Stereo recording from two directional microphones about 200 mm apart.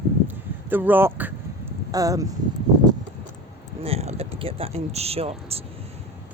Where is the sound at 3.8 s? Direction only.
30° right (ahead or behind).